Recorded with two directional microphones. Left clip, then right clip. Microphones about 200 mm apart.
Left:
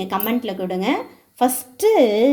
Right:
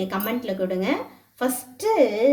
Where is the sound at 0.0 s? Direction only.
30° left (ahead or behind).